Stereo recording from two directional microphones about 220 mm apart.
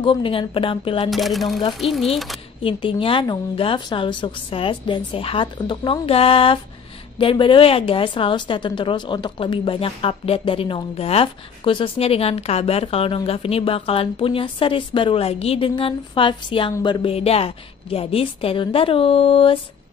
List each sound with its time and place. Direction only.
0.0 s a woman's voice: 25° left (ahead or behind)
1.1 s speech: centre (ahead or behind)
2.6 s a woman's voice: 25° left (ahead or behind)